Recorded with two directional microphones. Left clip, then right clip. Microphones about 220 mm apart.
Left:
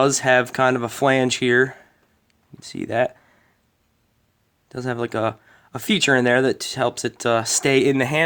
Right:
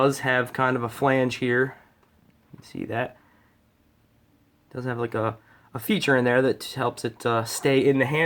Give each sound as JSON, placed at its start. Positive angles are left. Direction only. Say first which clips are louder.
{"t": 0.0, "sound": "speech", "louder": "left 5 dB", "side_deg": 35}
{"t": 4.7, "sound": "speech", "louder": "left 3 dB", "side_deg": 35}